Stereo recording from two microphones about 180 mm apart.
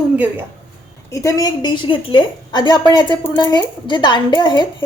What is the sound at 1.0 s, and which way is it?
A woman's voice, 20° left (ahead or behind).